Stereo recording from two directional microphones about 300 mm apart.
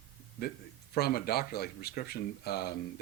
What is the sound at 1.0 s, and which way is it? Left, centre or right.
Speech, left.